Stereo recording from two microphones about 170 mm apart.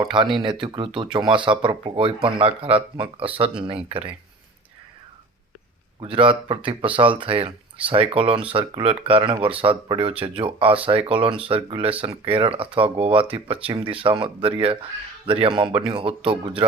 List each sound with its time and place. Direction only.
0.0 s speech: 30° right (ahead or behind)
6.0 s speech: 30° right (ahead or behind)